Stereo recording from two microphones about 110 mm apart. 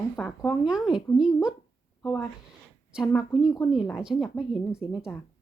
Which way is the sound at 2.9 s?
5° right (ahead or behind).